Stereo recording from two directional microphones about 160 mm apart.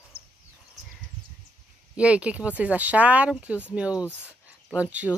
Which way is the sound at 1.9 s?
5° right (ahead or behind).